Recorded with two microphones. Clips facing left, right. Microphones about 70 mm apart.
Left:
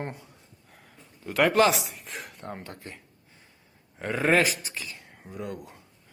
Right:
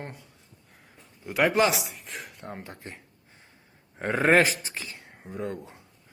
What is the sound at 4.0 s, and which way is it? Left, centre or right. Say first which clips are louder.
Speech: right 2 dB; right.